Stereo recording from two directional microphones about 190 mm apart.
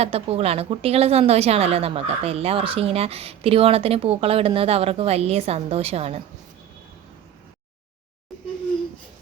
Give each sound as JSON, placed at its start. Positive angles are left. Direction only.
{"t": 0.0, "sound": "a woman's voice", "side_deg": -30}